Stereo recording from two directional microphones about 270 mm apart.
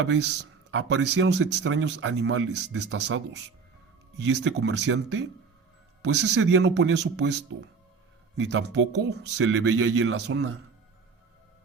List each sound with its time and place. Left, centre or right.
0.0 s speech: right
4.2 s speech: right
8.4 s speech: right